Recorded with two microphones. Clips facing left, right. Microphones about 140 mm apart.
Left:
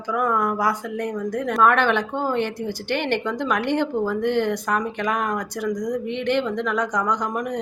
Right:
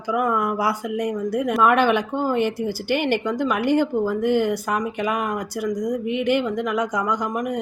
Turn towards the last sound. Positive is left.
turn(degrees=-5)  # may be behind; listen again after turning